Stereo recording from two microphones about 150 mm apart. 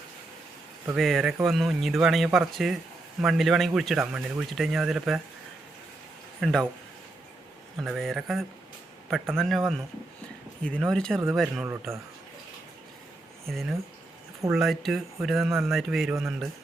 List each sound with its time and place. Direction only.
0.9 s a man's voice: centre (ahead or behind)
6.4 s a man's voice: centre (ahead or behind)
7.8 s a man's voice: centre (ahead or behind)
11.6 s a man's voice: 15° right (ahead or behind)
13.5 s a man's voice: centre (ahead or behind)